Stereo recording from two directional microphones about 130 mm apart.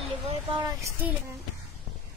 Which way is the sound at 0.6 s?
30° right (ahead or behind).